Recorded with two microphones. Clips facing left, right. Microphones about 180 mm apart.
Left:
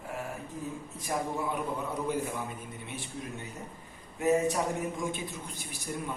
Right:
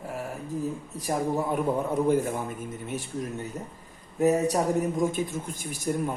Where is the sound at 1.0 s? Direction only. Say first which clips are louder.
Right 5 dB; 40° right (ahead or behind).